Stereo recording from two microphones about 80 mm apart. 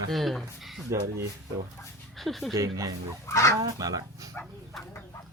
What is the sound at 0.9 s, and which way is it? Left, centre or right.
Speech, right.